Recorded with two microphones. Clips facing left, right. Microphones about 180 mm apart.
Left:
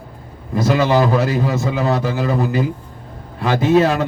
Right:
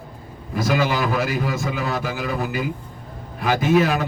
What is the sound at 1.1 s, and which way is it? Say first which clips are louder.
Speech: left 5 dB; 25° left (ahead or behind).